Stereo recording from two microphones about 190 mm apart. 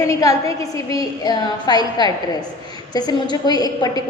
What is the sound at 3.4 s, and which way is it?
Speech, 20° left (ahead or behind).